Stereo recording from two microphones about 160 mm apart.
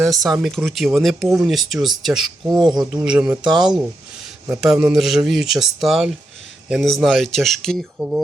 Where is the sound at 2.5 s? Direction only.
25° right (ahead or behind).